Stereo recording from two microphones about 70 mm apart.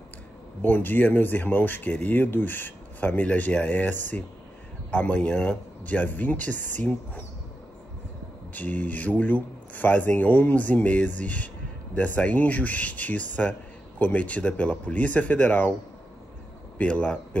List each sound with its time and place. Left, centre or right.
0.6 s speech: left
8.5 s speech: left
16.7 s a man's voice: centre